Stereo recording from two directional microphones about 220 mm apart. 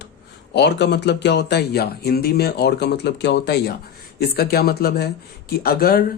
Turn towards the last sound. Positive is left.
turn(degrees=45)  # may be behind; listen again after turning